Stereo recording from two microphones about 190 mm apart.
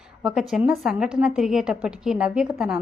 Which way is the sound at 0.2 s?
5° right (ahead or behind).